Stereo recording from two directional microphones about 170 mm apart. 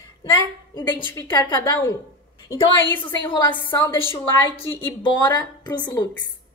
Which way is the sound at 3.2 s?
25° left (ahead or behind).